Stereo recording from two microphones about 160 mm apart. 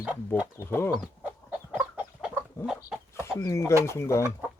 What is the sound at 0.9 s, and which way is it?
Chicken, 10° right (ahead or behind).